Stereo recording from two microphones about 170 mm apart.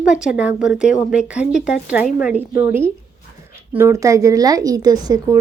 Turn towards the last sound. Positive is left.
turn(degrees=-20)  # may be behind; listen again after turning